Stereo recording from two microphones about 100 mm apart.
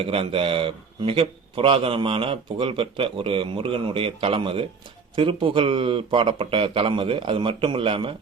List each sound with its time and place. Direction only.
0.0 s a man's voice: 70° right (ahead or behind)